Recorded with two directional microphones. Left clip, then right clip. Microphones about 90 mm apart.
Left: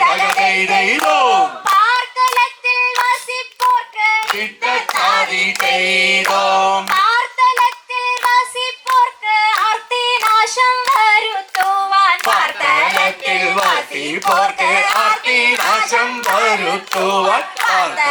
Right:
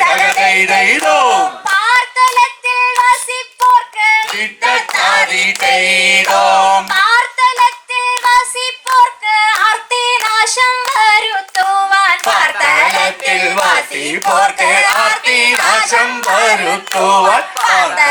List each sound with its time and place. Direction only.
0.0 s music: 30° right (ahead or behind)
3.9 s a sound: 30° right (ahead or behind)
6.9 s child singing: 30° right (ahead or behind)
11.9 s hands: 35° right (ahead or behind)